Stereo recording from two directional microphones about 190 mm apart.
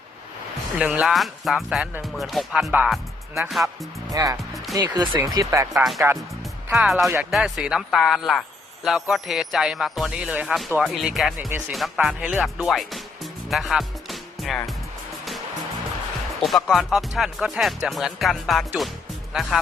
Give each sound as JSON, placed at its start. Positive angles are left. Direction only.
{"t": 0.8, "sound": "speech", "side_deg": -5}
{"t": 4.1, "sound": "speech", "side_deg": -20}
{"t": 5.7, "sound": "speech", "side_deg": 0}
{"t": 16.4, "sound": "speech", "side_deg": 0}